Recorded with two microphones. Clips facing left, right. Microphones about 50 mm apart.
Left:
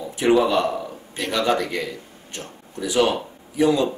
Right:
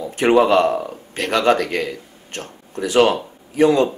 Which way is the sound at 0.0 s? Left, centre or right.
Right.